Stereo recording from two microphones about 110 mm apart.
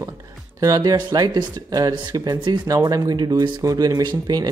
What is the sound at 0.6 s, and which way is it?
Speech, 35° right (ahead or behind).